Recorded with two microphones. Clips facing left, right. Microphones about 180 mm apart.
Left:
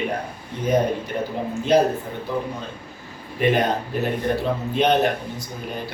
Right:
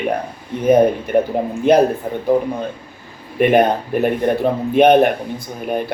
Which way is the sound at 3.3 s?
55° right (ahead or behind).